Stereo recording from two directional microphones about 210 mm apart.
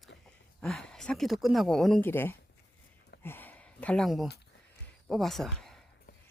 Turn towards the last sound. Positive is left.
turn(degrees=0)  # may be behind; listen again after turning